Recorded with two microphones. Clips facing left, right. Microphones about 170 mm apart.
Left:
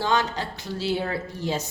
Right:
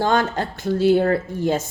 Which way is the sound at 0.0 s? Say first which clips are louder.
Right 5 dB; 50° right (ahead or behind).